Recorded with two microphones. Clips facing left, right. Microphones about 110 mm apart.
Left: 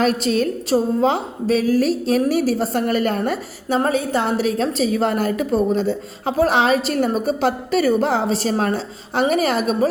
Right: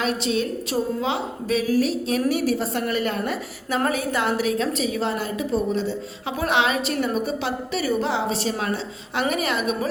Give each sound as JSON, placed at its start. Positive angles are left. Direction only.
{"t": 0.0, "sound": "a woman's voice", "side_deg": 45}